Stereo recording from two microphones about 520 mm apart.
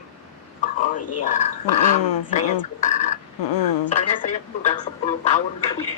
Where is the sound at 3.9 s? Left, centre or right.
Centre.